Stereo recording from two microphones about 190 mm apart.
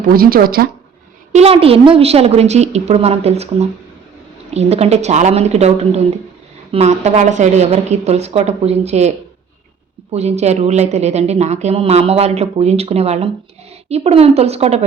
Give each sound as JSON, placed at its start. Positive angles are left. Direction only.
{"t": 0.1, "sound": "speech", "side_deg": -50}
{"t": 1.3, "sound": "a woman's voice", "side_deg": -35}